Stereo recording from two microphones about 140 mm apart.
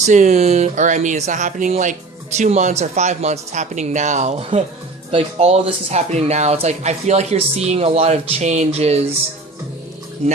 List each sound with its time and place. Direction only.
0.0 s speech: 60° right (ahead or behind)